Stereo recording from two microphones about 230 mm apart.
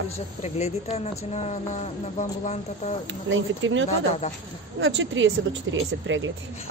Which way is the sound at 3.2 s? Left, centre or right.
Right.